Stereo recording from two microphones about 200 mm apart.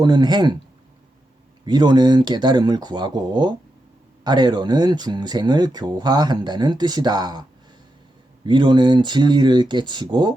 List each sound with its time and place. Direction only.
0.0 s speech: 20° right (ahead or behind)
1.6 s speech: 20° right (ahead or behind)
8.4 s speech: 25° right (ahead or behind)